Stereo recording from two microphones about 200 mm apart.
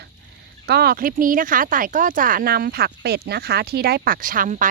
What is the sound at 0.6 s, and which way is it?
Speech, 55° right (ahead or behind).